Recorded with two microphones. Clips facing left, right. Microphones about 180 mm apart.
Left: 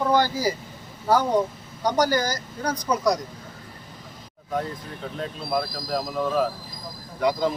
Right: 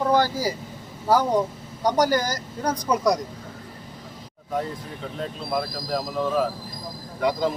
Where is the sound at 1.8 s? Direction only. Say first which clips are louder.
Right 1 dB; 45° right (ahead or behind).